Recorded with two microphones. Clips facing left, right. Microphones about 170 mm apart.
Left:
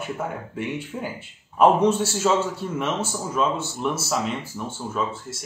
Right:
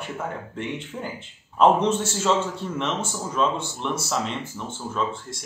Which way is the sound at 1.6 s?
10° left (ahead or behind).